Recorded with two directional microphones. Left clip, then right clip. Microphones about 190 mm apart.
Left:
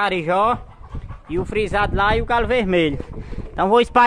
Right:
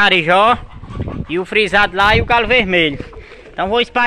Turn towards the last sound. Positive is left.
turn(degrees=40)  # may be behind; listen again after turning